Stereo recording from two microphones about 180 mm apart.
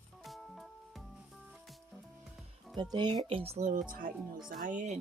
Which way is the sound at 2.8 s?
25° right (ahead or behind).